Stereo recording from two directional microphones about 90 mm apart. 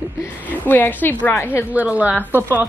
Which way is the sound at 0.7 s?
20° left (ahead or behind).